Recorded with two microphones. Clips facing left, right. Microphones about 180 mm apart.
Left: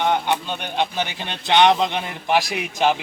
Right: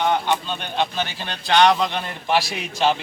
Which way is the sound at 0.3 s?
15° left (ahead or behind).